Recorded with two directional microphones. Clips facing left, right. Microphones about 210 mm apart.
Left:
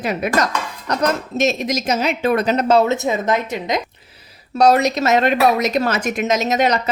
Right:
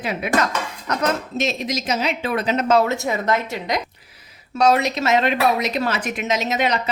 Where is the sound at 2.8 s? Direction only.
20° left (ahead or behind).